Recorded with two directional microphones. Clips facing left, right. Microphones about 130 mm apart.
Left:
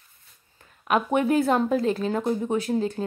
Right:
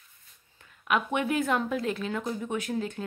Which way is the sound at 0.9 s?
40° left (ahead or behind).